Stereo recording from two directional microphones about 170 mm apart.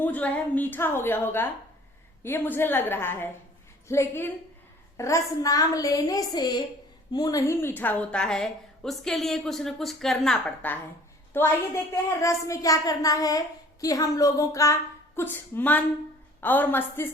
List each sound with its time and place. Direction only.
0.0 s a woman's voice: 10° left (ahead or behind)